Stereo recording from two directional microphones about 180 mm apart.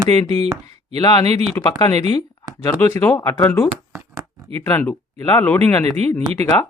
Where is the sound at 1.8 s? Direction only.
25° left (ahead or behind).